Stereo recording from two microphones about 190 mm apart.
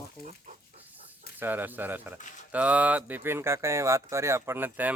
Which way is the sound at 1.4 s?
10° right (ahead or behind).